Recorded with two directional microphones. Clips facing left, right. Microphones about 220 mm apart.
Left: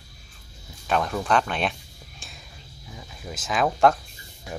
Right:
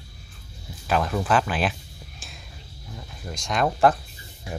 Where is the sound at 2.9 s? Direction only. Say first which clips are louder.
Right 1 dB; centre (ahead or behind).